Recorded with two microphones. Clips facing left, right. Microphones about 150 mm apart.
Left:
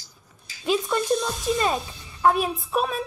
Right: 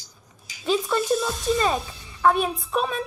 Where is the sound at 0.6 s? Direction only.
Centre (ahead or behind).